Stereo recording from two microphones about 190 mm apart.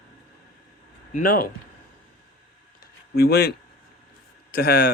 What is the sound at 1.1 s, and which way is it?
Speech, 50° left (ahead or behind).